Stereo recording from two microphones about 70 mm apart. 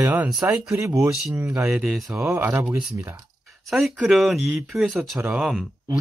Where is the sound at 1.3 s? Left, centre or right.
Right.